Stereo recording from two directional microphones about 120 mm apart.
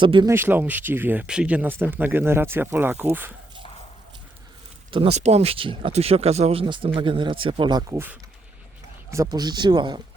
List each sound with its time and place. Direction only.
0.0 s speech: 45° right (ahead or behind)
0.3 s speech: 20° right (ahead or behind)
4.9 s speech: 45° right (ahead or behind)
5.1 s speech: 65° right (ahead or behind); by 5.9 s 50° right (ahead or behind)
5.9 s speech: 60° right (ahead or behind); by 7.9 s 35° right (ahead or behind)
7.9 s speech: 15° right (ahead or behind)
9.0 s speech: 25° right (ahead or behind)